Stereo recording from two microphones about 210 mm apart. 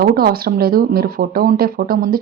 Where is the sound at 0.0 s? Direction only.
45° right (ahead or behind).